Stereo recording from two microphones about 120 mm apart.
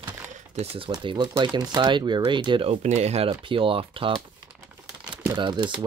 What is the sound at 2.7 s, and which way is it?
Speech, 70° right (ahead or behind).